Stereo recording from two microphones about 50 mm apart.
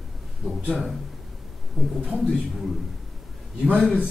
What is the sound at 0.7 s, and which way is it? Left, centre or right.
Speech, centre.